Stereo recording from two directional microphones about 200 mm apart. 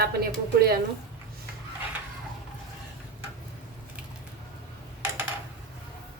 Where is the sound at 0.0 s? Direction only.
50° right (ahead or behind).